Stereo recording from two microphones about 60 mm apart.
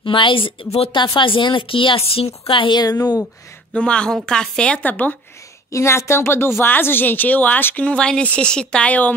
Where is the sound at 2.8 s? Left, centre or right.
Left.